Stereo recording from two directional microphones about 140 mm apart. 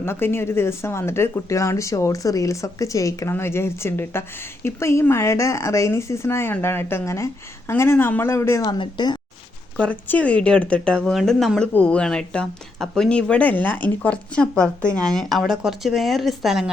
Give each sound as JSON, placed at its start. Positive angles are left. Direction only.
{"t": 0.0, "sound": "speech", "side_deg": 15}
{"t": 8.6, "sound": "speech", "side_deg": 35}
{"t": 9.7, "sound": "speech", "side_deg": 10}